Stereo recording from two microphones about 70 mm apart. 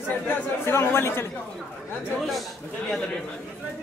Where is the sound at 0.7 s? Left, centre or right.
Left.